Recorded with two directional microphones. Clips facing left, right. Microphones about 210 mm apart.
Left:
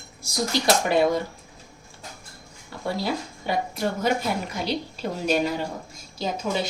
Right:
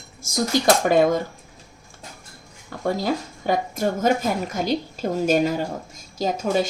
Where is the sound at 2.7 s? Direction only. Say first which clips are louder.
Right 4 dB; 45° right (ahead or behind).